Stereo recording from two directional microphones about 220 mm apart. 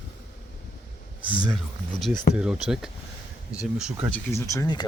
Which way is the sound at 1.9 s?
Centre (ahead or behind).